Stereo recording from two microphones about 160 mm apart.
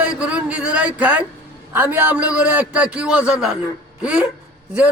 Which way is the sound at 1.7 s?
10° right (ahead or behind).